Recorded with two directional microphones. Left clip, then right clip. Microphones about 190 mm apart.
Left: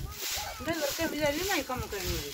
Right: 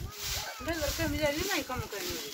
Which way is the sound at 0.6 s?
50° left (ahead or behind).